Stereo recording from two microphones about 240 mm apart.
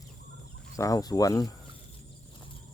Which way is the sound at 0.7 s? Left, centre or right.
Centre.